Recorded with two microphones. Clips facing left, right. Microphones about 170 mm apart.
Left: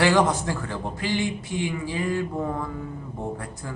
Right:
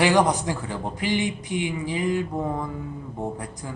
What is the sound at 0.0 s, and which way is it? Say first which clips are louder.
A man's voice: right 1 dB; 15° right (ahead or behind).